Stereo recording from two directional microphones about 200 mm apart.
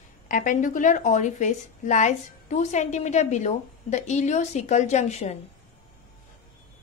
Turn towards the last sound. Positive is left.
turn(degrees=35)  # may be behind; listen again after turning